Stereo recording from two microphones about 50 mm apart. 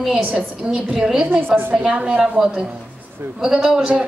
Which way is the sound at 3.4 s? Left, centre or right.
Centre.